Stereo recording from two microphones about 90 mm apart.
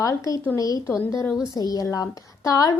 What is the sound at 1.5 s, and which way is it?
A woman's voice, 45° left (ahead or behind).